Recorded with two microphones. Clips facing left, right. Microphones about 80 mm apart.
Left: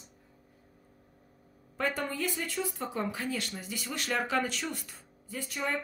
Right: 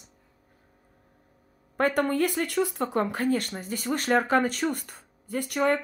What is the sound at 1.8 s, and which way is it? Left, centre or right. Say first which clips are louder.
Speech: right 9 dB; right.